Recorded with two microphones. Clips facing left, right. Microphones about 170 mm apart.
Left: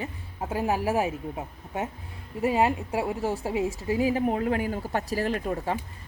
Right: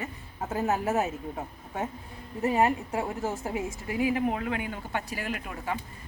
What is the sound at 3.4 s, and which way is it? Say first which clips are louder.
Speech: left 5 dB; 15° left (ahead or behind).